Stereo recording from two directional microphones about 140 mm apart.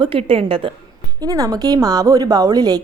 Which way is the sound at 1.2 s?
25° right (ahead or behind).